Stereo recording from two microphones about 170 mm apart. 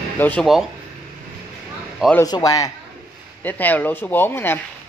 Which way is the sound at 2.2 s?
20° left (ahead or behind).